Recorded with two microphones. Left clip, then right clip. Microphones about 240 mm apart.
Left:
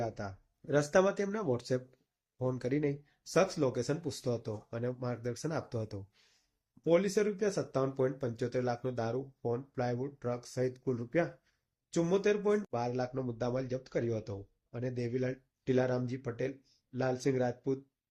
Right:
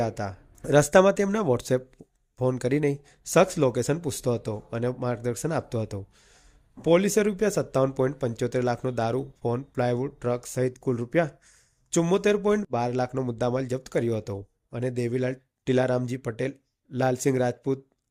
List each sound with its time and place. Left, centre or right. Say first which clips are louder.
0.0 s a man's voice: right 9 dB; right